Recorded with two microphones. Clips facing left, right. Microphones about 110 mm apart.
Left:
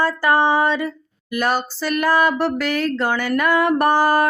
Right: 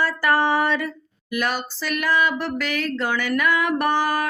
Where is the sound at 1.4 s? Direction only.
35° left (ahead or behind).